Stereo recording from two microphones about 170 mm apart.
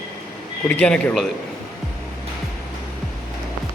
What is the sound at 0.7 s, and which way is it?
Speech, 5° left (ahead or behind).